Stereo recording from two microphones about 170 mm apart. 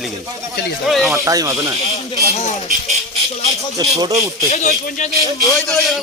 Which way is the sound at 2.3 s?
40° left (ahead or behind).